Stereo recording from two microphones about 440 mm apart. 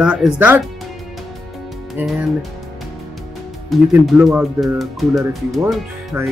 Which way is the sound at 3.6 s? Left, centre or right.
Centre.